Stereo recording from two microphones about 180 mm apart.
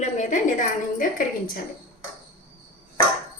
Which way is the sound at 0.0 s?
45° left (ahead or behind).